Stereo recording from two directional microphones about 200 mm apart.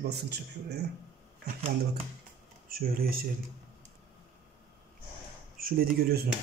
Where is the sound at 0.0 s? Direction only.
55° right (ahead or behind).